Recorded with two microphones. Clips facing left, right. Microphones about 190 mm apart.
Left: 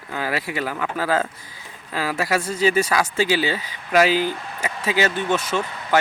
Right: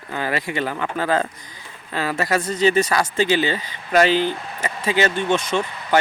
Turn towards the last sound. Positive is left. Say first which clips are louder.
# right 2 dB
turn(degrees=5)  # may be behind; listen again after turning